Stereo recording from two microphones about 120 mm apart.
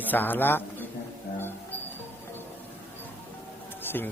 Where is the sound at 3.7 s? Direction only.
15° left (ahead or behind).